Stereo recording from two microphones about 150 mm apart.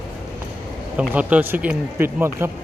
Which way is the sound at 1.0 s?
10° right (ahead or behind).